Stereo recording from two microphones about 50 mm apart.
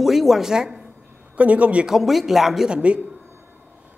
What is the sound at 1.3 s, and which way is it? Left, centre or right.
Speech, right.